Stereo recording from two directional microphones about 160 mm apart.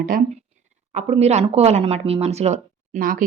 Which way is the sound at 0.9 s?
45° right (ahead or behind).